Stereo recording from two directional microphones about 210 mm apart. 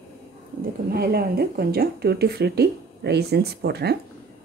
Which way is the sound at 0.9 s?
45° right (ahead or behind).